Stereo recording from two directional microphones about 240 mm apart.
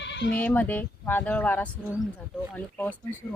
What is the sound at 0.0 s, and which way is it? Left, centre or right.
Bleat, left.